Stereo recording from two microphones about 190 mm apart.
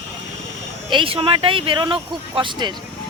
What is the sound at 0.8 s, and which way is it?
Speech, 25° right (ahead or behind).